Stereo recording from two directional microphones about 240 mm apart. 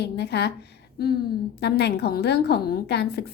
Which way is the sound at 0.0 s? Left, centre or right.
Left.